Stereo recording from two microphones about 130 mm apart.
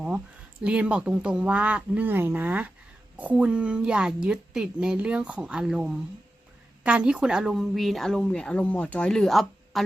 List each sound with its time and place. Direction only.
0.6 s a woman's voice: 10° right (ahead or behind)